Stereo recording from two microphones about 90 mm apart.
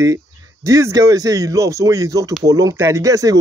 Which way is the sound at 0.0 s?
40° right (ahead or behind).